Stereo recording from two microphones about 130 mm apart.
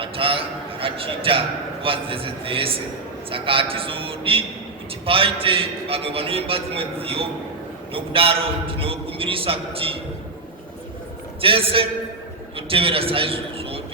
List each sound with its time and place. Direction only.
0.0 s a man's voice: 45° right (ahead or behind)
11.3 s a man's voice: 45° right (ahead or behind)